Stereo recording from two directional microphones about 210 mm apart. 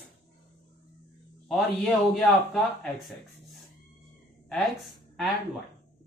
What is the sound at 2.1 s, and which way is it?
Speech, centre (ahead or behind).